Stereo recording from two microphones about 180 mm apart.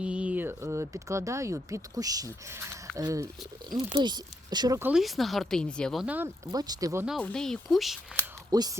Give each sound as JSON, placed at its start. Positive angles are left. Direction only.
{"t": 0.0, "sound": "speech", "side_deg": -5}
{"t": 4.8, "sound": "speech", "side_deg": -5}
{"t": 7.2, "sound": "speech", "side_deg": 5}
{"t": 8.4, "sound": "speech", "side_deg": -20}